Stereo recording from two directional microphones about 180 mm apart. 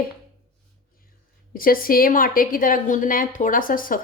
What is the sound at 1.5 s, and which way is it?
A woman's voice, 50° left (ahead or behind).